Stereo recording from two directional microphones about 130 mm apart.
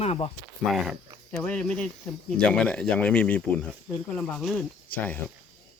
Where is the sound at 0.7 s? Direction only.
5° right (ahead or behind).